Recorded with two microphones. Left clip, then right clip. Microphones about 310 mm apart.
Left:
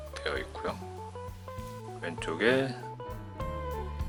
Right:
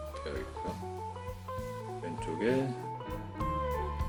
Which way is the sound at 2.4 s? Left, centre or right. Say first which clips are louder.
Left 5 dB; centre.